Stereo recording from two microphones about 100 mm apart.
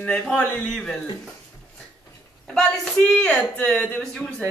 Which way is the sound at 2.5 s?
5° left (ahead or behind).